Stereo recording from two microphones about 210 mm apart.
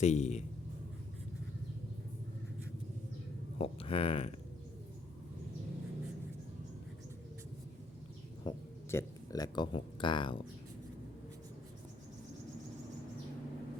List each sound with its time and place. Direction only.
0.0 s speech: 35° left (ahead or behind)
3.6 s speech: 25° left (ahead or behind)
8.4 s a sound: 15° left (ahead or behind)